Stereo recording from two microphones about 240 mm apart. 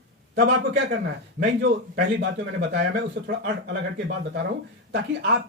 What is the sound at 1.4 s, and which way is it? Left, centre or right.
Speech, right.